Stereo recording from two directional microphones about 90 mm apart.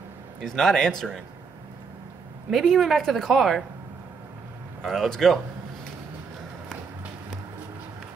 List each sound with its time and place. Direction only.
0.4 s a woman's voice: 5° left (ahead or behind)
2.5 s a woman's voice: centre (ahead or behind)
4.8 s a woman's voice: centre (ahead or behind)